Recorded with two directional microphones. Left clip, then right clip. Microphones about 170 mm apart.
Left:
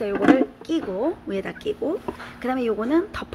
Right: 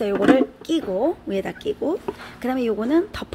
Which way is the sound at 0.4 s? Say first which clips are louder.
Right 2 dB; 20° right (ahead or behind).